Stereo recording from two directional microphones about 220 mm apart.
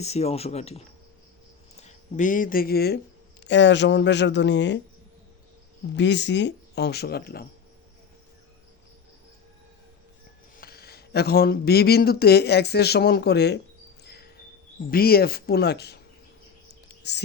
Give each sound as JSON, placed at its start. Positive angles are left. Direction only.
{"t": 0.0, "sound": "speech", "side_deg": 30}
{"t": 6.0, "sound": "speech", "side_deg": 55}
{"t": 10.6, "sound": "speech", "side_deg": 45}
{"t": 14.0, "sound": "a sound", "side_deg": 45}
{"t": 14.8, "sound": "speech", "side_deg": 45}
{"t": 17.0, "sound": "whispering", "side_deg": 50}